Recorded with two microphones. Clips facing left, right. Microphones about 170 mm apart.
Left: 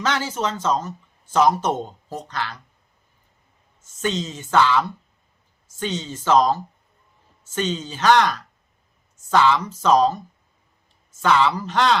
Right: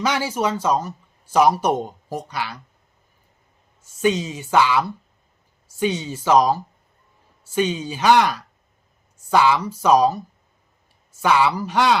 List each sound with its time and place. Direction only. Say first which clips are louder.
0.0 s speech: right 2 dB; 10° right (ahead or behind)
3.8 s speech: right 5 dB; 10° right (ahead or behind)